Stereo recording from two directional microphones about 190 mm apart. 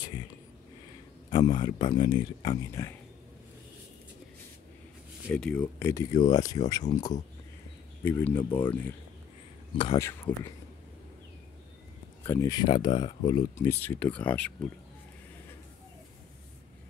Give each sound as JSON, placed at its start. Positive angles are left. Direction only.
{"t": 1.3, "sound": "speech", "side_deg": 25}
{"t": 5.3, "sound": "speech", "side_deg": 5}
{"t": 9.8, "sound": "speech", "side_deg": 25}
{"t": 10.0, "sound": "speech", "side_deg": 15}
{"t": 12.2, "sound": "speech", "side_deg": 15}